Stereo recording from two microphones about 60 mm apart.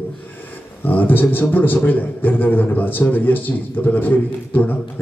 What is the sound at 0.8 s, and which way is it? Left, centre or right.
A man's voice, left.